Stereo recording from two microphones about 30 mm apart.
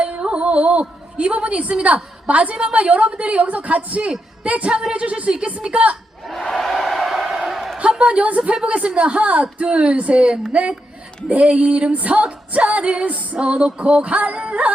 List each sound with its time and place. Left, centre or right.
0.2 s a sound: right
2.2 s speech: right
2.6 s music: right
3.1 s speech: right
4.9 s music: right
5.7 s music: right
6.4 s crowd: centre
7.8 s a woman's voice: right
10.5 s music: right
11.3 s speech: right
12.8 s music: right
13.1 s speech: right
13.5 s music: right